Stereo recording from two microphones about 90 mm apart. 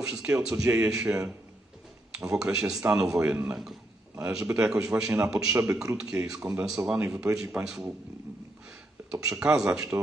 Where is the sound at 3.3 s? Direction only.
20° right (ahead or behind).